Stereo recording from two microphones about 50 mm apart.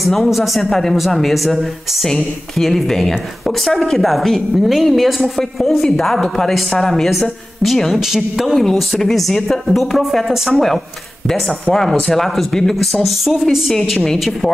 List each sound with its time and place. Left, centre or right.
0.0 s a woman's voice: centre
8.5 s a woman's voice: centre